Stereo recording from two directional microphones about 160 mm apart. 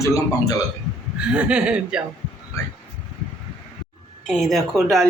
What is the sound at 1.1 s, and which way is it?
Speech, 5° right (ahead or behind).